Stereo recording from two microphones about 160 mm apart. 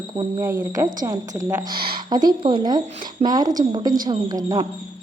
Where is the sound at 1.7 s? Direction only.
70° right (ahead or behind).